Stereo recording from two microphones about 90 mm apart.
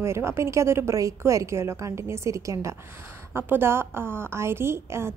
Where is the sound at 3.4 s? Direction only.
25° right (ahead or behind).